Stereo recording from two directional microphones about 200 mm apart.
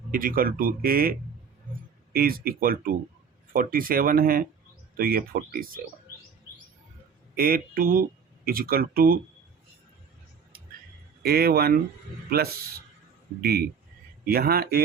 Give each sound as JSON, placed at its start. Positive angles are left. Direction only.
{"t": 0.1, "sound": "speech", "side_deg": -45}
{"t": 2.1, "sound": "speech", "side_deg": -45}
{"t": 7.3, "sound": "speech", "side_deg": -45}
{"t": 11.2, "sound": "speech", "side_deg": -50}
{"t": 13.4, "sound": "speech", "side_deg": -50}